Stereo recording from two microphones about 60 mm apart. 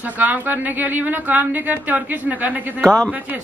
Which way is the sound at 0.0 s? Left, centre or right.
Right.